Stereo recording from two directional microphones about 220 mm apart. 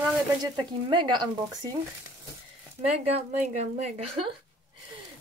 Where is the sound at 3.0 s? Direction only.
30° right (ahead or behind).